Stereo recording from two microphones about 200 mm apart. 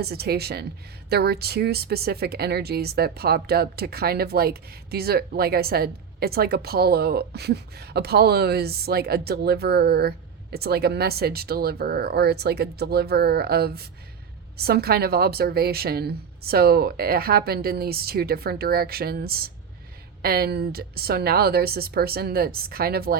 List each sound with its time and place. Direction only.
0.0 s speech: 50° right (ahead or behind)